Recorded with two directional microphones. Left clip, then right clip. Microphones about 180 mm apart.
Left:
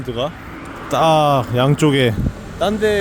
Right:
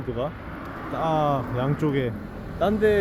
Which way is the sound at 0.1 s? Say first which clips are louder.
Left 7 dB; 55° left (ahead or behind).